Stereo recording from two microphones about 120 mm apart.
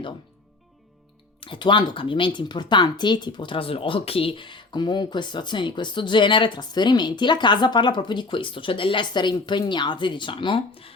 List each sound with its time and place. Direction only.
1.4 s speech: 40° left (ahead or behind)